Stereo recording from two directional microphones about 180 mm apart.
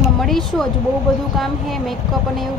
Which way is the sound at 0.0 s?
Centre (ahead or behind).